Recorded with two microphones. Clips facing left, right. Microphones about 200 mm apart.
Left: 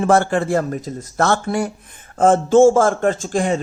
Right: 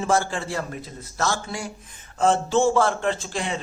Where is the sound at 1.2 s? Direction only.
60° left (ahead or behind).